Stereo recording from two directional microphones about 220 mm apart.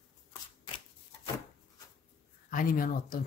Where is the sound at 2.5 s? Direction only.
40° left (ahead or behind).